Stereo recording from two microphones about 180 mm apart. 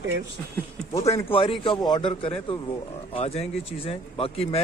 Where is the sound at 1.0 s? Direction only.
35° left (ahead or behind).